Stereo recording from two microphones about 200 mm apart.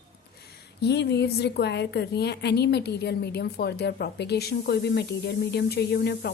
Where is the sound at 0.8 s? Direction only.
55° left (ahead or behind).